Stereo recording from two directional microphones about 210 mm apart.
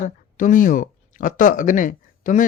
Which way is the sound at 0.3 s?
40° left (ahead or behind).